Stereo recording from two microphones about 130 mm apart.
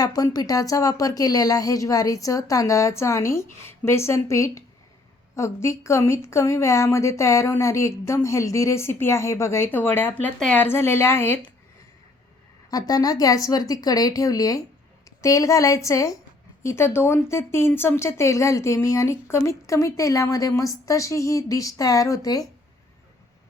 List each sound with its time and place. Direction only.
0.0 s a woman's voice: 30° left (ahead or behind)
12.7 s speech: 30° left (ahead or behind)